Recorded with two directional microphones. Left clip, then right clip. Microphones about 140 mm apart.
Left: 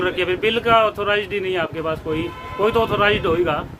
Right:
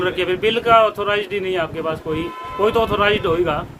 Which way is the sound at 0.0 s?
5° left (ahead or behind).